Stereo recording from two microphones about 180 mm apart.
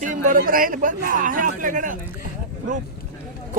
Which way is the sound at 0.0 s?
50° right (ahead or behind).